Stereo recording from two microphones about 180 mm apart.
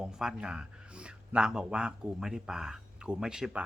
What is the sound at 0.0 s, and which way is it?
Speech, 5° right (ahead or behind).